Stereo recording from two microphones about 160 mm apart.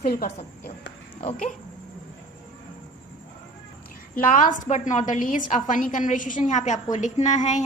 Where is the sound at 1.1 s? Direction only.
40° left (ahead or behind).